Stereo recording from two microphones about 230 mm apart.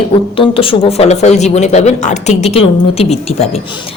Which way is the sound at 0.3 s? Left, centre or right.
Left.